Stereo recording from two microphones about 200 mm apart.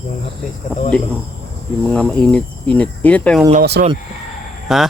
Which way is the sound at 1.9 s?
5° left (ahead or behind).